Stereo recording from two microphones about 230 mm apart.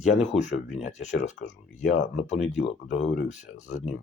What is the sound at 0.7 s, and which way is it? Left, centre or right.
Speech, left.